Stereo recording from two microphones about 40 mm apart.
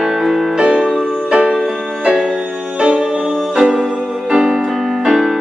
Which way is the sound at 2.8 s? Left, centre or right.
Right.